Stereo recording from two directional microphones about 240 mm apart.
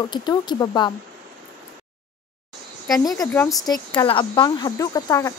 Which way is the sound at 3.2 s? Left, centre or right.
Centre.